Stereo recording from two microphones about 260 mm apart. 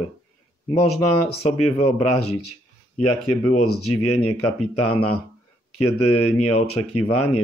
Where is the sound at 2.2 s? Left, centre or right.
Left.